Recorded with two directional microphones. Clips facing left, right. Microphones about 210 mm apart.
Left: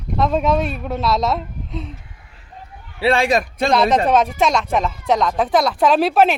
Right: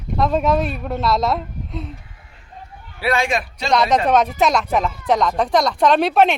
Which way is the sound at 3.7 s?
Centre (ahead or behind).